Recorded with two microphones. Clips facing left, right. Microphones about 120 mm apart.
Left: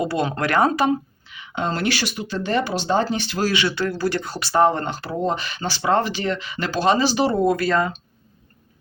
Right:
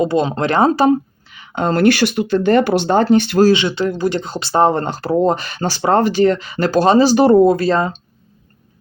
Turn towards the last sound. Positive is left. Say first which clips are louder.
# right 5 dB
turn(degrees=-30)  # may be behind; listen again after turning